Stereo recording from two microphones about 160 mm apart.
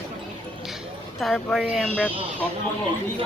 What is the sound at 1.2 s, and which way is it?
Speech, centre (ahead or behind).